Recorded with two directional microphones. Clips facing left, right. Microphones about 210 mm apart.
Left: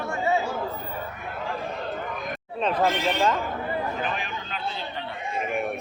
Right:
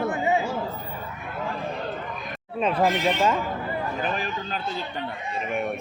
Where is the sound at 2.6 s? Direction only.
5° right (ahead or behind).